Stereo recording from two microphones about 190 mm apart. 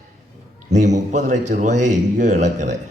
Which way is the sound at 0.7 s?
40° right (ahead or behind).